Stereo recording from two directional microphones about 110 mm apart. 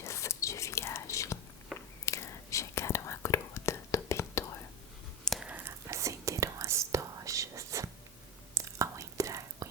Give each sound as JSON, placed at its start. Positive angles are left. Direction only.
{"t": 0.0, "sound": "whispering", "side_deg": 25}
{"t": 1.7, "sound": "biting", "side_deg": 0}
{"t": 2.0, "sound": "whispering", "side_deg": 25}
{"t": 5.4, "sound": "whispering", "side_deg": -15}
{"t": 5.9, "sound": "whispering", "side_deg": -30}